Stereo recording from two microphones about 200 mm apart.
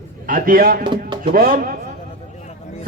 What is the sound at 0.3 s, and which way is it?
A man's voice, 45° right (ahead or behind).